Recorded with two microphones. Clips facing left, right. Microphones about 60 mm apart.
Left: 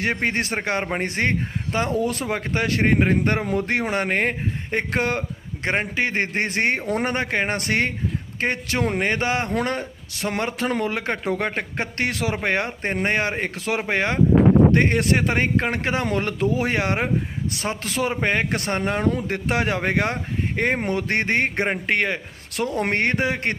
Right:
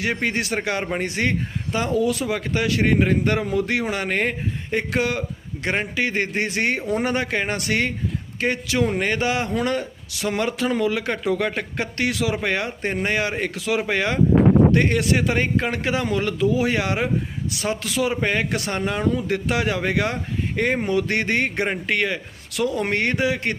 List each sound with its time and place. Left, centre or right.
0.0 s a man's voice: left